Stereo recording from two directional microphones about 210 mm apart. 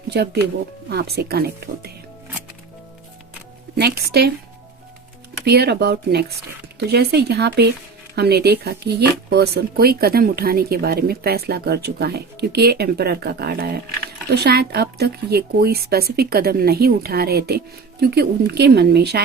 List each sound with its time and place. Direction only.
0.1 s speech: 50° right (ahead or behind)
3.8 s speech: 50° right (ahead or behind)
5.5 s speech: 50° right (ahead or behind)